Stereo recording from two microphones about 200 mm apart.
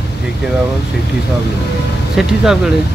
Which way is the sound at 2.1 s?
5° right (ahead or behind).